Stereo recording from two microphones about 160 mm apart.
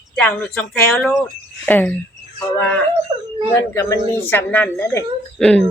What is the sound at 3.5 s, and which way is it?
A woman's voice, 15° left (ahead or behind).